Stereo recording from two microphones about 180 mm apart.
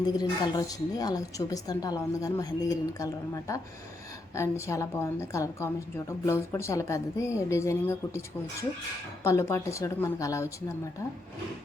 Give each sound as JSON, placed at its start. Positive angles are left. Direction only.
{"t": 0.2, "sound": "a woman's voice", "side_deg": 20}
{"t": 9.2, "sound": "a woman's voice", "side_deg": 15}